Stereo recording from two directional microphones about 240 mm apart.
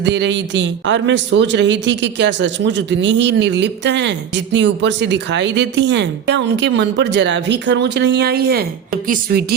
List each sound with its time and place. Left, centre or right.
0.0 s a man's voice: right